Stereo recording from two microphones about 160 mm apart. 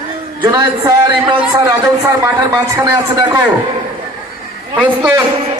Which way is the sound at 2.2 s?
15° right (ahead or behind).